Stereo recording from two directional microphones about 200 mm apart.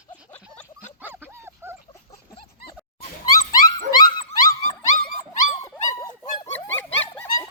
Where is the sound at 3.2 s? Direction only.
20° left (ahead or behind).